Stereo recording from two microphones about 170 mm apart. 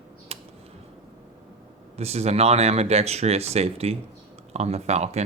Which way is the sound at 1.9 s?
40° right (ahead or behind).